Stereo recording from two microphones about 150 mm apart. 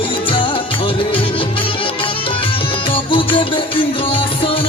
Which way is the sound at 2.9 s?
35° left (ahead or behind).